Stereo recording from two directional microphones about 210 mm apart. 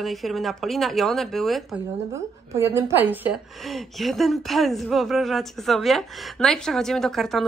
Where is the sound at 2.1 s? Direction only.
10° right (ahead or behind).